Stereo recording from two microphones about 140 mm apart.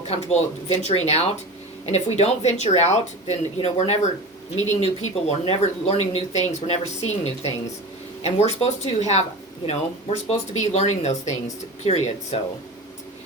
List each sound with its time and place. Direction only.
0.1 s speech: 50° left (ahead or behind)